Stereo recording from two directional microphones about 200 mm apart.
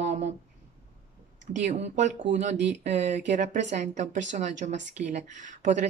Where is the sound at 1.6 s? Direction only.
35° right (ahead or behind).